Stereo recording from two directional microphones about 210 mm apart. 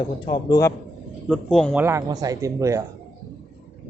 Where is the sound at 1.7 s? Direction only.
10° right (ahead or behind).